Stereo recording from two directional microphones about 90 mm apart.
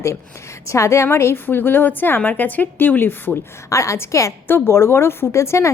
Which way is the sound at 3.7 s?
35° left (ahead or behind).